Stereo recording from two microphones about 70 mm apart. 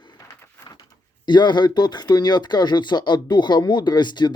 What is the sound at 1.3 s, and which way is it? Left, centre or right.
Speech, left.